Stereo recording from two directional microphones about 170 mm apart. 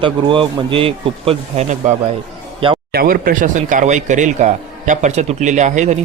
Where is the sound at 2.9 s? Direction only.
60° right (ahead or behind); by 6.0 s 45° right (ahead or behind).